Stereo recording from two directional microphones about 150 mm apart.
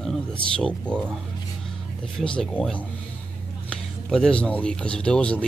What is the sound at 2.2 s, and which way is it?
A man's voice, 5° left (ahead or behind).